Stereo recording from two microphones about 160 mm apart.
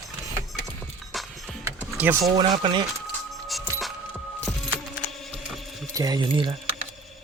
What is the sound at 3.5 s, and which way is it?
Music, centre (ahead or behind).